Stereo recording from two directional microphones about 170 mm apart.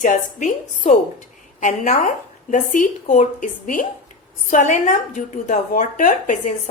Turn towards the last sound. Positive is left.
turn(degrees=50)  # may be behind; listen again after turning